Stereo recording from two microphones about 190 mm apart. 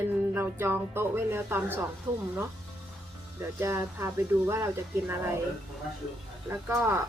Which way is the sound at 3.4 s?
15° right (ahead or behind).